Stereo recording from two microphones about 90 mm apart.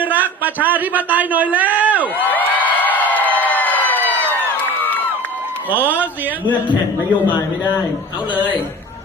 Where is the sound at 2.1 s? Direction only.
20° left (ahead or behind).